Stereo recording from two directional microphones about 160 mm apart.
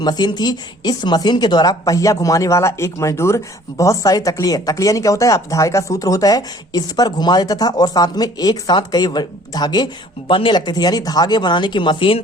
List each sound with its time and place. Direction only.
0.0 s speech: 25° left (ahead or behind)